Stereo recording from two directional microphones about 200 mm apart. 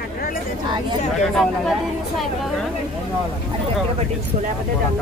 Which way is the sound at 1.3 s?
Centre (ahead or behind).